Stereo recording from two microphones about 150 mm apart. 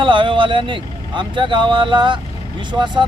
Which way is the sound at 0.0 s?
35° right (ahead or behind).